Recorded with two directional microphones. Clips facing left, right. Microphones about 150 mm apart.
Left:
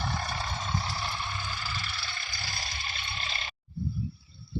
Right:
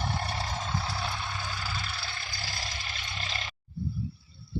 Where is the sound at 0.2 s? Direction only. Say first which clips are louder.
Right 1 dB; 80° right.